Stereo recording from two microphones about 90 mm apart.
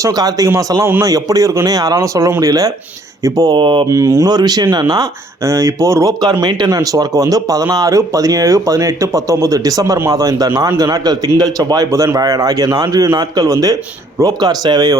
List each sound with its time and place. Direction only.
0.0 s speech: 40° right (ahead or behind)
3.6 s speech: 60° right (ahead or behind)
3.8 s speech: 35° right (ahead or behind)
4.3 s speech: 50° right (ahead or behind)
5.5 s speech: 35° right (ahead or behind)